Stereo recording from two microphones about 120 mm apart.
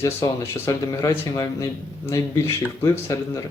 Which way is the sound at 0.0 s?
20° left (ahead or behind).